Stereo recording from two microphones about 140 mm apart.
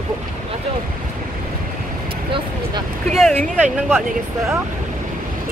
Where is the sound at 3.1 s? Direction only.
Centre (ahead or behind).